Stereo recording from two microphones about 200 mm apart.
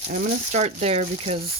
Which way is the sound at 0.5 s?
35° right (ahead or behind).